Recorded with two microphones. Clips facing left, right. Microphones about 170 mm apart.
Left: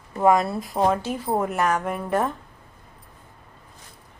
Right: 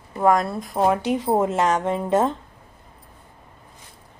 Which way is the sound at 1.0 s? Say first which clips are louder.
Right 4 dB; 20° right (ahead or behind).